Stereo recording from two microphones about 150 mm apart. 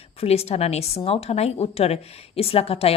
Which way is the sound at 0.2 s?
40° left (ahead or behind).